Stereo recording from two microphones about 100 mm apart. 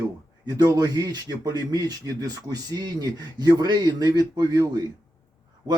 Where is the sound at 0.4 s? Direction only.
40° right (ahead or behind).